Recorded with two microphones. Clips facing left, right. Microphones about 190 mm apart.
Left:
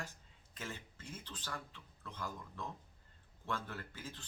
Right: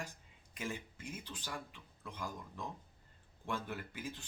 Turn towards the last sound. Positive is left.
turn(degrees=-15)  # may be behind; listen again after turning